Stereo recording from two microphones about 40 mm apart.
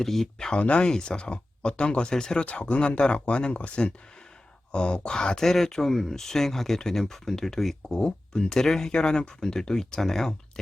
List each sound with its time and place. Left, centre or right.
0.0 s speech: centre
0.3 s speech: centre
0.6 s speech: left; by 10.3 s centre